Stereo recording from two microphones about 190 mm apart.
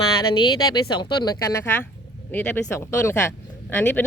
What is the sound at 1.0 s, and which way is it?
Speech, 20° left (ahead or behind).